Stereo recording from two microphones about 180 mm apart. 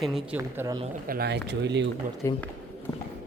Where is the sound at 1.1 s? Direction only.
60° right (ahead or behind).